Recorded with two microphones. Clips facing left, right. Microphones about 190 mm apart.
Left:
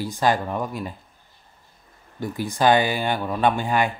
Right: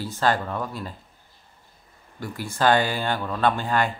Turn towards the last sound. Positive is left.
turn(degrees=15)  # may be behind; listen again after turning